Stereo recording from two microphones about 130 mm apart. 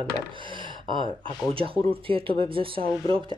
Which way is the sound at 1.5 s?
45° right (ahead or behind).